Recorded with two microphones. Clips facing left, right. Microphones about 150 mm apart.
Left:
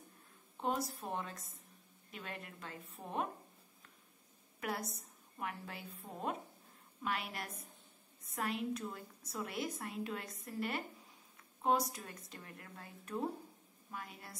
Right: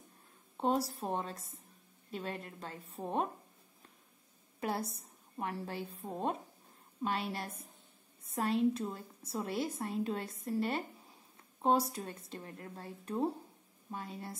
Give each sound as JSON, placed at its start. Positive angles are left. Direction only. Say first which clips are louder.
{"t": 0.6, "sound": "a woman's voice", "louder": "right 5 dB", "side_deg": -30}
{"t": 4.6, "sound": "a woman's voice", "louder": "right 4 dB", "side_deg": -30}